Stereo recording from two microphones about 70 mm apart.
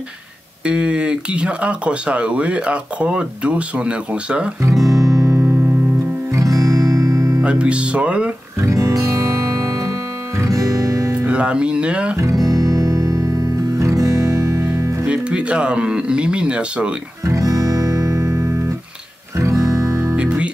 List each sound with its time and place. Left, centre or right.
0.7 s speech: centre
4.6 s guitar: right
6.3 s music: right
7.4 s speech: centre
8.5 s music: right
11.2 s speech: centre
12.4 s music: right
15.0 s speech: centre
17.2 s guitar: right
19.3 s music: right
20.2 s music: centre